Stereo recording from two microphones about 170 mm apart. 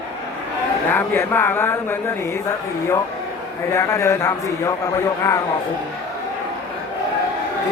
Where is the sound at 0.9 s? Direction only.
10° left (ahead or behind).